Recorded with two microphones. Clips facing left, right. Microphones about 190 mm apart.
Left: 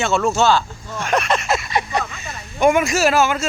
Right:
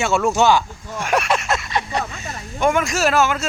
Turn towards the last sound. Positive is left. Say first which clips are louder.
# left 1 dB
turn(degrees=0)  # may be behind; listen again after turning